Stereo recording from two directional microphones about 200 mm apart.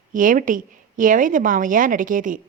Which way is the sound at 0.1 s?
40° right (ahead or behind).